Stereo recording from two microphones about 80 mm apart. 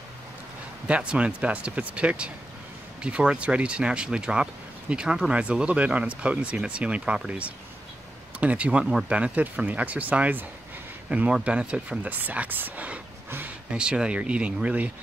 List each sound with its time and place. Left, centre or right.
0.8 s speech: centre